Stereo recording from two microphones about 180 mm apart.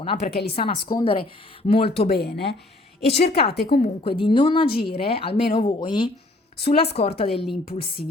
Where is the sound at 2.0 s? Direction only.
65° left (ahead or behind).